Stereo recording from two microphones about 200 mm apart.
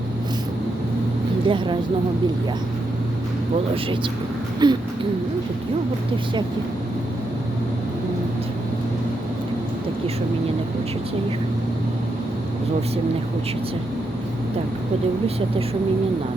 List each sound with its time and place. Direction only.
1.5 s speech: 25° right (ahead or behind)
4.6 s speech: 20° right (ahead or behind)